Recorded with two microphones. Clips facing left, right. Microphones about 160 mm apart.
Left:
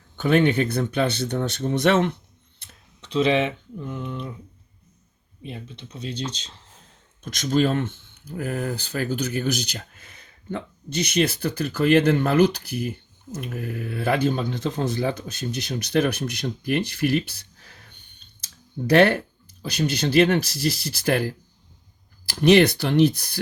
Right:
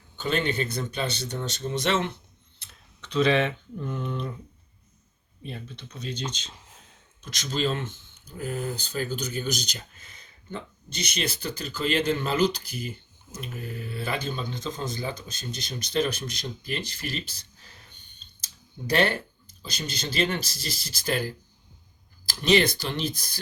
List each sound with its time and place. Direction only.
0.2 s speech: 65° left (ahead or behind)
3.0 s speech: 25° left (ahead or behind)
3.8 s speech: 10° left (ahead or behind)
5.4 s speech: 15° left (ahead or behind)
7.2 s speech: 50° left (ahead or behind)